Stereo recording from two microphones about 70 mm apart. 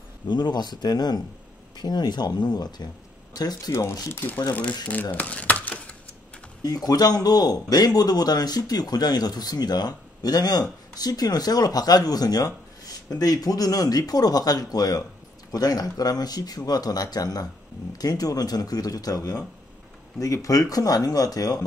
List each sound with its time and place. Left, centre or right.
0.3 s speech: left
3.3 s speech: left
4.1 s speech: left
5.1 s crumpling: left
6.6 s speech: left